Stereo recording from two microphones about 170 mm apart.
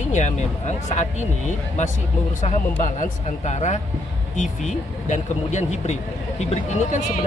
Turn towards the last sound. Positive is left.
turn(degrees=45)  # may be behind; listen again after turning